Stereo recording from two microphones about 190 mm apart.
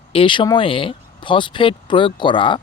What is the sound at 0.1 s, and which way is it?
Speech, 25° left (ahead or behind).